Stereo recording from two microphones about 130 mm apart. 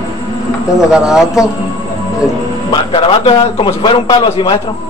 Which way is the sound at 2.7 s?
40° left (ahead or behind).